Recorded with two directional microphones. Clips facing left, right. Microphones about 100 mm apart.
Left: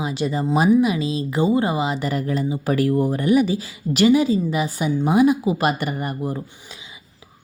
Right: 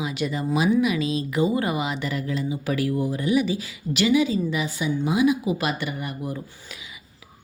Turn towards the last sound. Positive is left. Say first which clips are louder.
# left 5 dB
turn(degrees=40)  # may be behind; listen again after turning